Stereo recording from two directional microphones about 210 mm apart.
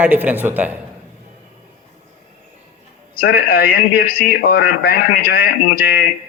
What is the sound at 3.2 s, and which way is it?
A man's voice, 45° left (ahead or behind).